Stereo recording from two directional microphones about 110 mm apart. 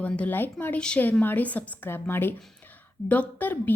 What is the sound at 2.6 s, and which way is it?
A woman's voice, 15° left (ahead or behind).